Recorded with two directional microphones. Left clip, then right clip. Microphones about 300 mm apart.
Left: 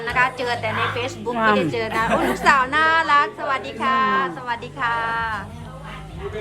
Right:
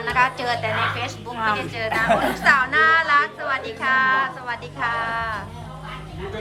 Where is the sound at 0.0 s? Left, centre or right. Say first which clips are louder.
Even; centre.